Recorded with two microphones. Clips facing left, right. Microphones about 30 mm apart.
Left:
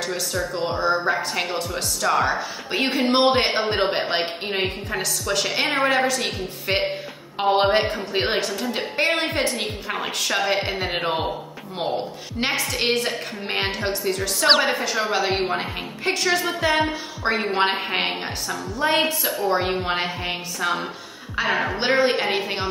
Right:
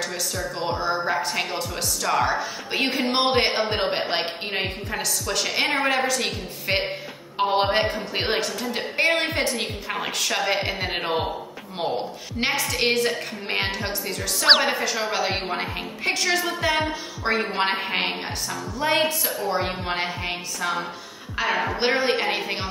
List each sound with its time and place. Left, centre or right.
0.7 s speech: centre
12.4 s speech: centre
21.7 s speech: centre